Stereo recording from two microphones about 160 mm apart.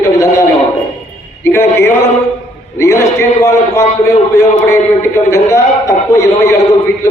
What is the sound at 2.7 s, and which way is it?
A man's voice, 20° left (ahead or behind).